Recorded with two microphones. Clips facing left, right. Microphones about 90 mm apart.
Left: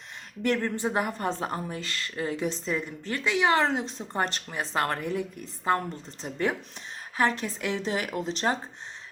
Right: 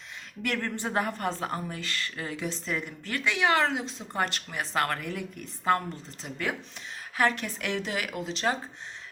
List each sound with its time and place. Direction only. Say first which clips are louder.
0.4 s a woman's voice: left 5 dB; 20° left (ahead or behind)
3.7 s speech: left 3 dB; 40° left (ahead or behind)
4.1 s a woman's voice: left 1 dB; 30° left (ahead or behind)
6.2 s speech: left 4 dB; 35° left (ahead or behind)
7.2 s a woman's voice: left 1 dB; 20° left (ahead or behind)
7.9 s speech: left 3 dB; 40° left (ahead or behind)